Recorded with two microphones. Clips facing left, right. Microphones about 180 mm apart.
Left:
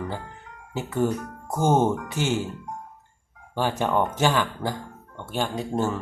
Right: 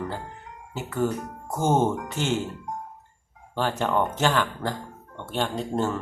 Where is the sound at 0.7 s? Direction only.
15° left (ahead or behind).